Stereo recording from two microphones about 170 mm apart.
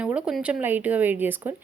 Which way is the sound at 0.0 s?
5° right (ahead or behind).